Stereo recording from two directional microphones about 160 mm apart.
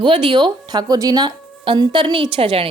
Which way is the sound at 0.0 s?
30° right (ahead or behind).